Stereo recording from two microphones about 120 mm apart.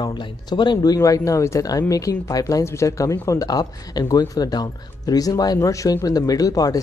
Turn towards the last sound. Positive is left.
turn(degrees=30)  # may be behind; listen again after turning